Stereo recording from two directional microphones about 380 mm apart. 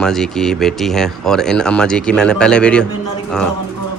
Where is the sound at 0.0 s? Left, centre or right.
Centre.